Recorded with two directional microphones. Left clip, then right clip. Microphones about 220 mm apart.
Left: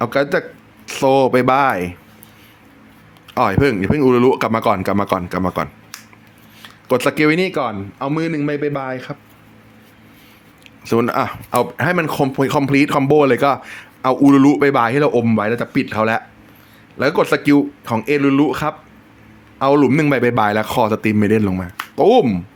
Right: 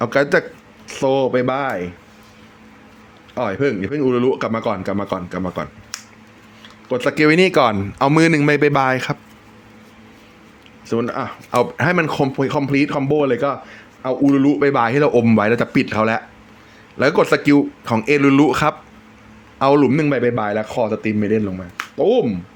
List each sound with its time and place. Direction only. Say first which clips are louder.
0.0 s speech: right 1 dB; centre (ahead or behind)
0.9 s speech: left 4 dB; 15° left (ahead or behind)
3.3 s speech: left 4 dB; 20° left (ahead or behind)
5.9 s finger snapping: right 7 dB; 15° right (ahead or behind)
7.0 s speech: right 2 dB; 5° left (ahead or behind)
7.3 s speech: right 5 dB; 10° right (ahead or behind)
10.8 s speech: left 5 dB; 20° left (ahead or behind)
11.5 s speech: even; centre (ahead or behind); by 14.6 s 20° left (ahead or behind)
14.6 s a man's voice: left 1 dB; 5° left (ahead or behind)
19.9 s speech: left 2 dB; 10° left (ahead or behind)